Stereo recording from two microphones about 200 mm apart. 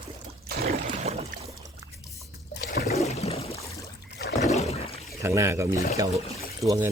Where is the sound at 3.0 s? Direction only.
35° left (ahead or behind).